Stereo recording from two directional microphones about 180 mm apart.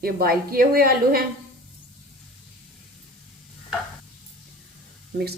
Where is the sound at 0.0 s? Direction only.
55° right (ahead or behind).